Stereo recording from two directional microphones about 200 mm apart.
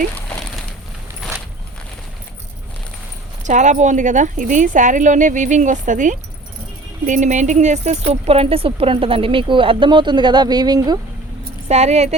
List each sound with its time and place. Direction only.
3.4 s speech: 35° right (ahead or behind); by 11.0 s 20° right (ahead or behind)
11.7 s speech: 35° right (ahead or behind)